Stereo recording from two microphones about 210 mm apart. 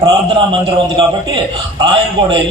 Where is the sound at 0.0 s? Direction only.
25° right (ahead or behind).